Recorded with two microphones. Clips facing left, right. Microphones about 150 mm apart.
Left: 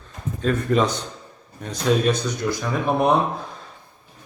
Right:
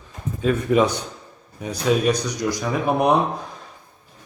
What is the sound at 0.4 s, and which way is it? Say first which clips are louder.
A man's voice: right 2 dB; 10° right (ahead or behind).